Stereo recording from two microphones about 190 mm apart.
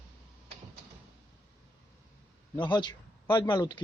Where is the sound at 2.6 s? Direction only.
25° left (ahead or behind).